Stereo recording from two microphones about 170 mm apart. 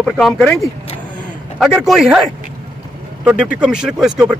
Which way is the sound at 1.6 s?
Centre (ahead or behind).